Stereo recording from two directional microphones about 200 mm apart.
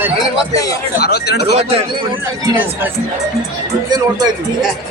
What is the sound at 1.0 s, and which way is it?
Speech, 55° left (ahead or behind).